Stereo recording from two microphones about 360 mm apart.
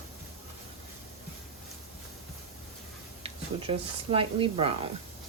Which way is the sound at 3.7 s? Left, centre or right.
Centre.